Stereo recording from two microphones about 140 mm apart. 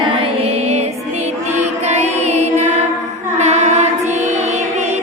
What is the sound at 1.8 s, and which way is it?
Music, 55° right (ahead or behind).